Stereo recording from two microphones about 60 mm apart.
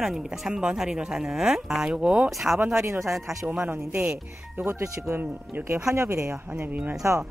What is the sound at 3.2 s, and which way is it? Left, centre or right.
Speech, right.